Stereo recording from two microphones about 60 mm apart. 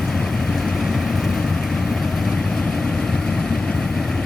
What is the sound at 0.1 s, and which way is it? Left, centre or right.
Vehicle, centre.